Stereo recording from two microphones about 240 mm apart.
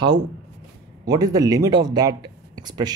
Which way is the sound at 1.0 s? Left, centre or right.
Centre.